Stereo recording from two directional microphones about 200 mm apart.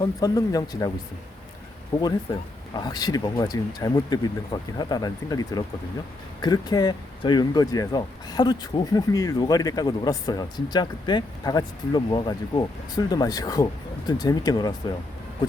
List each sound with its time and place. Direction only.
0.0 s speech: 20° left (ahead or behind)
1.9 s speech: 20° left (ahead or behind)